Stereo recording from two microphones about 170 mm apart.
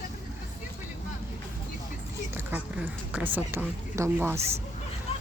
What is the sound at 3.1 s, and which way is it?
A woman's voice, 10° right (ahead or behind).